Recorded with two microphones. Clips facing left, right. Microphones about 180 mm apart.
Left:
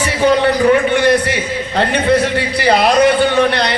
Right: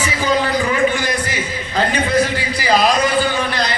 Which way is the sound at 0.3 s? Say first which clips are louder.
Left 7 dB; 65° left (ahead or behind).